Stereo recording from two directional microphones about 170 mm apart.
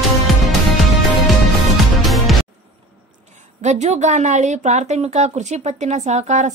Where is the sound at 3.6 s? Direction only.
45° right (ahead or behind).